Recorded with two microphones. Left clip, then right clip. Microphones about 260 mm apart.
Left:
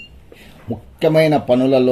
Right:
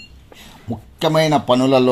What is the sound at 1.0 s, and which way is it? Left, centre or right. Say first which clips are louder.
Speech: left 2 dB; right.